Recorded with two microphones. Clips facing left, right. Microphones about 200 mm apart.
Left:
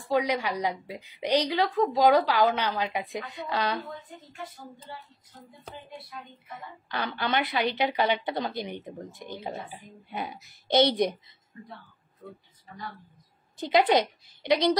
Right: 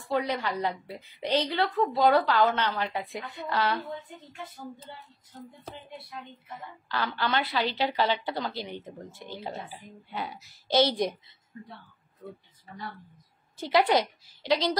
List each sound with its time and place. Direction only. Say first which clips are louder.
0.1 s a woman's voice: left 2 dB; 15° left (ahead or behind)
6.9 s a woman's voice: even; 20° left (ahead or behind)
13.6 s a woman's voice: left 1 dB; 15° left (ahead or behind)